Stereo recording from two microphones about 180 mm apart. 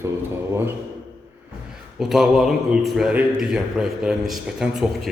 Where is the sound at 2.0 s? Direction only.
Centre (ahead or behind).